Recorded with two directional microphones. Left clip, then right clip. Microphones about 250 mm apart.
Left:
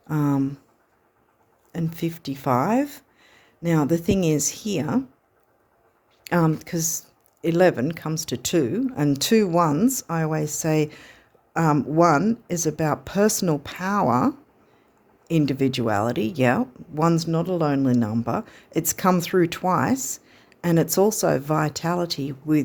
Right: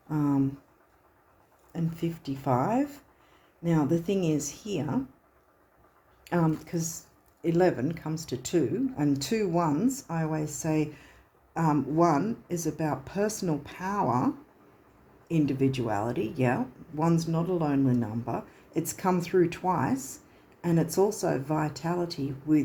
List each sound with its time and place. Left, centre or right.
0.1 s speech: left
1.7 s speech: left
6.2 s speech: left